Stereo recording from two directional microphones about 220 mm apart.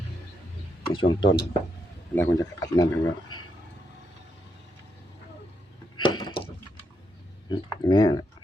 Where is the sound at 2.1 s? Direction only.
15° left (ahead or behind).